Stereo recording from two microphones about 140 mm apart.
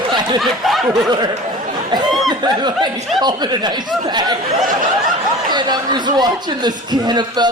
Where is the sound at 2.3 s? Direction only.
30° right (ahead or behind).